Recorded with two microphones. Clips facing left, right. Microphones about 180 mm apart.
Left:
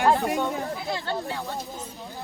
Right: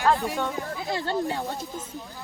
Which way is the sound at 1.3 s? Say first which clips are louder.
Right 2 dB; 15° right (ahead or behind).